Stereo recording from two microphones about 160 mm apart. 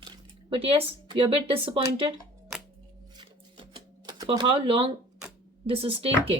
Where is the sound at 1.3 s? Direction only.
35° right (ahead or behind).